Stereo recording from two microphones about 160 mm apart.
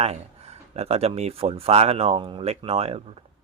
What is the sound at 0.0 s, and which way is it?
Speech, 40° right (ahead or behind).